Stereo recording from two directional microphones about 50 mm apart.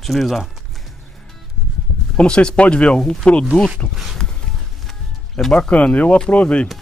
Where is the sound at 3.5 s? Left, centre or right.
Left.